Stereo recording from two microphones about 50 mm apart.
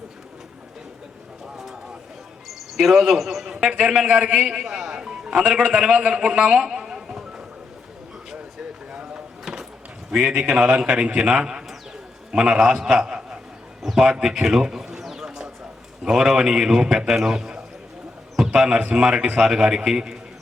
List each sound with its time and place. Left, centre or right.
2.5 s speech: centre
3.4 s a man's voice: centre
4.6 s a man's voice: centre
6.5 s music: centre
8.9 s a sound: centre
10.1 s a man's voice: centre
13.8 s a sound: centre
16.0 s a man's voice: centre
18.3 s a sound: centre
18.8 s a man's voice: centre